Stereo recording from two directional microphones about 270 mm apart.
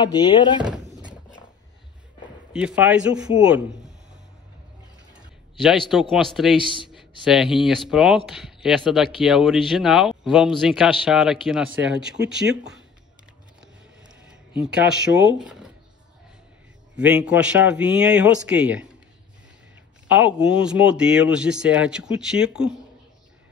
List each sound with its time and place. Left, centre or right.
0.0 s speech: centre
2.5 s speech: centre
5.6 s speech: centre
6.6 s speech: centre
7.2 s speech: centre
12.2 s speech: right
14.6 s speech: centre
16.9 s speech: centre
20.1 s speech: centre